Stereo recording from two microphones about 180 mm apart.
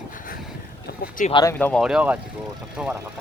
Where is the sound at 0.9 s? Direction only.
60° left (ahead or behind).